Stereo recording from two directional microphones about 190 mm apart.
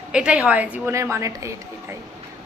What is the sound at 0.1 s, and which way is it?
A woman's voice, 5° right (ahead or behind).